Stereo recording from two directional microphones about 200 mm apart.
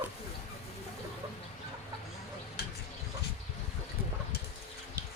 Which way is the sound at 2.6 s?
55° left (ahead or behind).